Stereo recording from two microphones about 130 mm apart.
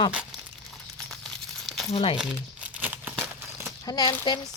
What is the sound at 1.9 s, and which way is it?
Speech, 45° left (ahead or behind).